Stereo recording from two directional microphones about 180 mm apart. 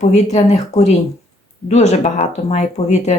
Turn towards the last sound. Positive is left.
turn(degrees=40)  # may be behind; listen again after turning